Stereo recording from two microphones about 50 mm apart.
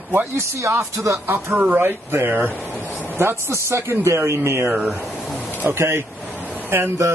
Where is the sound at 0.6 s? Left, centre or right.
Right.